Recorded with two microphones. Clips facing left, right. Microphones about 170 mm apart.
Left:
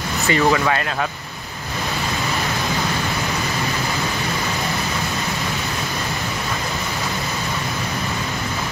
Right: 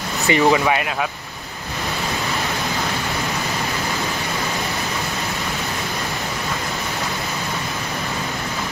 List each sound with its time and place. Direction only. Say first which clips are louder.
0.3 s speech: right 2 dB; 15° right (ahead or behind)